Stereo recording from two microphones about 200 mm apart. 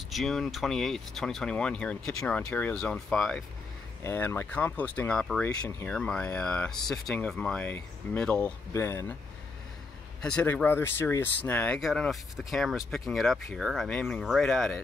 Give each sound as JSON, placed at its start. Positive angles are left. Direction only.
{"t": 0.1, "sound": "speech", "side_deg": 0}
{"t": 10.2, "sound": "speech", "side_deg": 5}